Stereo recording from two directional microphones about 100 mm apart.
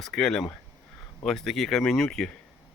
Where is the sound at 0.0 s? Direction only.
5° left (ahead or behind).